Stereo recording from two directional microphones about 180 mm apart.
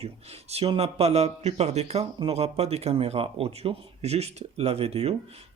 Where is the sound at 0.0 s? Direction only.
35° right (ahead or behind).